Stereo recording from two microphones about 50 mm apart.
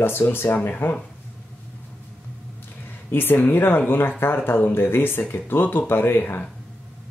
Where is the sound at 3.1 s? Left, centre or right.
Left.